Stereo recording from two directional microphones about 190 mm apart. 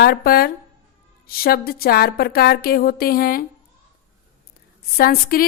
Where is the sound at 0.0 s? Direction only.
55° left (ahead or behind).